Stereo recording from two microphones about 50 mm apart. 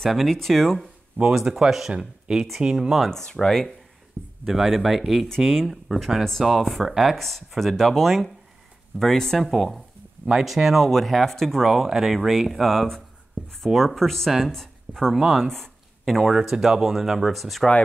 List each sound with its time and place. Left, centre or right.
0.1 s speech: centre
1.3 s speech: centre
3.1 s speech: centre
4.2 s speech: right
4.5 s speech: centre
6.9 s speech: centre
7.2 s speech: centre